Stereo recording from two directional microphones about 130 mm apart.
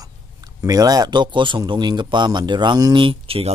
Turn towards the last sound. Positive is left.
turn(degrees=-45)  # may be behind; listen again after turning